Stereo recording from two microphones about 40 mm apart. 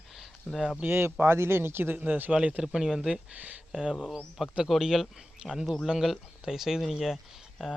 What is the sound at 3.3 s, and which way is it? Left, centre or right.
Speech, right.